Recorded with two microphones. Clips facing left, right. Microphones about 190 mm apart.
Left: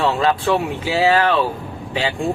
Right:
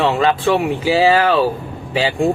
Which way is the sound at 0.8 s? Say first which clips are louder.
Right 3 dB; 30° right (ahead or behind).